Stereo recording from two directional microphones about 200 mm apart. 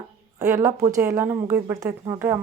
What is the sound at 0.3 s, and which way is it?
A woman's voice, 15° right (ahead or behind).